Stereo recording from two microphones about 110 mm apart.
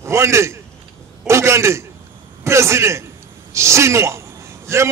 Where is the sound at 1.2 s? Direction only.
25° right (ahead or behind).